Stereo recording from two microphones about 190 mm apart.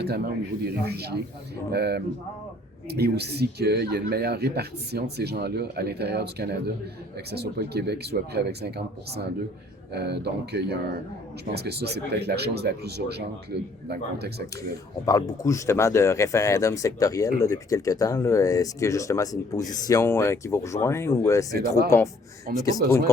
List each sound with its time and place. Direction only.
0.0 s speech: 55° right (ahead or behind)
15.0 s speech: 20° left (ahead or behind)
22.5 s speech: 50° right (ahead or behind)